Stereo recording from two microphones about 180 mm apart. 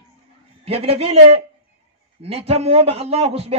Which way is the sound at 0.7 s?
35° right (ahead or behind).